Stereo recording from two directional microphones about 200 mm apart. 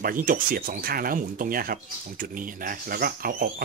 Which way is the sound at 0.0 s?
45° right (ahead or behind).